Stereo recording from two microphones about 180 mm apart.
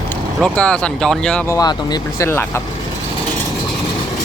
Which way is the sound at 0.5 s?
5° left (ahead or behind).